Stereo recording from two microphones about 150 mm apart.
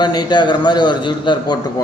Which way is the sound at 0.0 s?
30° left (ahead or behind).